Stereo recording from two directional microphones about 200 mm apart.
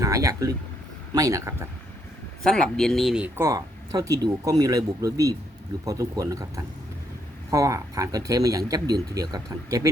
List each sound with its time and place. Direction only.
0.0 s speech: 15° right (ahead or behind)
2.4 s speech: 5° left (ahead or behind); by 9.9 s 15° right (ahead or behind)